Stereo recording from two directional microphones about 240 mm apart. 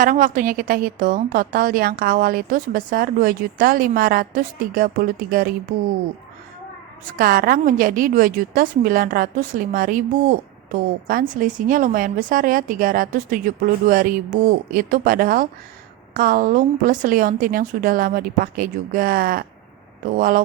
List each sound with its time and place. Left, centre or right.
0.0 s a woman's voice: right
7.0 s a woman's voice: right